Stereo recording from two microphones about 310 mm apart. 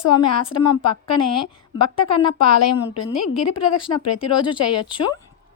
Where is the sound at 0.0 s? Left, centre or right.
Left.